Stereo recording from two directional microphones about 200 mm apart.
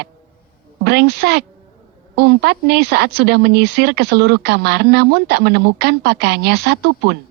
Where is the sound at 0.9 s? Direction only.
55° right (ahead or behind).